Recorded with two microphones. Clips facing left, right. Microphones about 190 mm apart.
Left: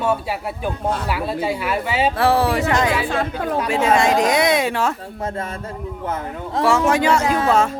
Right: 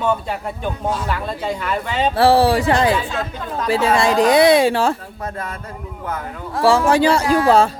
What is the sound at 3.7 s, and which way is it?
A woman's voice, 35° right (ahead or behind).